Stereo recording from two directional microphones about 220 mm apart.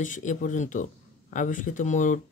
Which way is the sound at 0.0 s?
35° left (ahead or behind).